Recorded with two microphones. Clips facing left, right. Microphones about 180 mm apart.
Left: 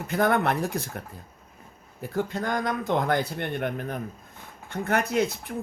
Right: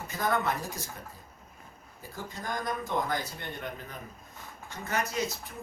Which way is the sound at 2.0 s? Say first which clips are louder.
Left 11 dB; 70° left (ahead or behind).